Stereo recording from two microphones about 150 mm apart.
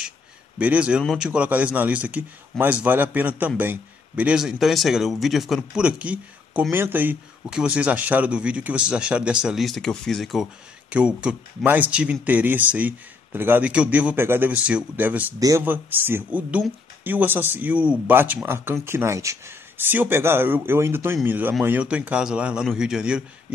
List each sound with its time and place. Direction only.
0.6 s a man's voice: 10° right (ahead or behind)